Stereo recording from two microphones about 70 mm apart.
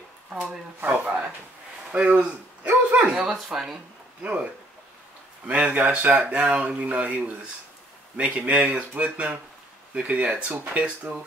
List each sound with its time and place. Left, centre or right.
0.3 s speech: centre
1.0 s speech: centre
3.1 s speech: centre
4.2 s speech: centre
5.5 s speech: centre